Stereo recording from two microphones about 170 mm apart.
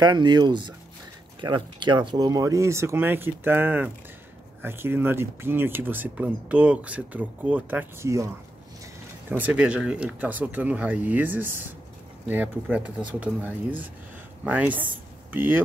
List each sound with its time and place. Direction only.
0.0 s speech: 25° right (ahead or behind)
9.4 s speech: 5° right (ahead or behind)